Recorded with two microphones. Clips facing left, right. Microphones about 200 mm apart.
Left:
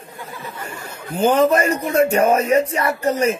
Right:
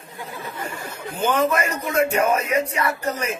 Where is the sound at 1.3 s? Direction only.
35° left (ahead or behind).